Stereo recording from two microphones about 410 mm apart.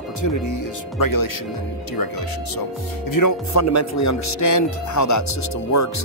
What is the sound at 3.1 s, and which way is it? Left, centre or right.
Speech, left.